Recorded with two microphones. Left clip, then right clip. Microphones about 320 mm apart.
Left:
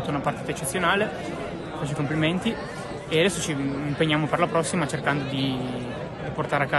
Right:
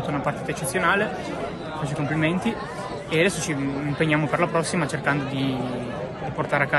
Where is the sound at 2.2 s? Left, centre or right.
Centre.